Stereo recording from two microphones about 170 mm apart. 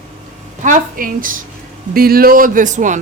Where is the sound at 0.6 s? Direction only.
50° right (ahead or behind).